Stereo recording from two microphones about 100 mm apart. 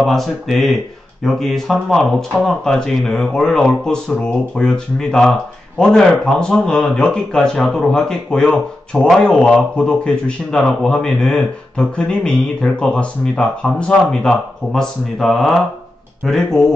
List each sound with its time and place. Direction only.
0.0 s speech: centre (ahead or behind)